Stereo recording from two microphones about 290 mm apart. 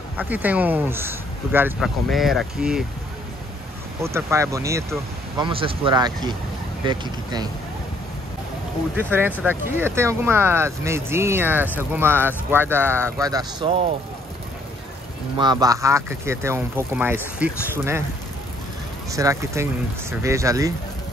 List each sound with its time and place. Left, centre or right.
0.2 s speech: centre
4.0 s speech: centre
8.9 s speech: centre
15.3 s speech: centre
19.1 s speech: centre